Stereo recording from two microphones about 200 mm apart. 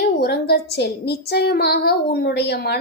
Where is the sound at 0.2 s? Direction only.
55° left (ahead or behind).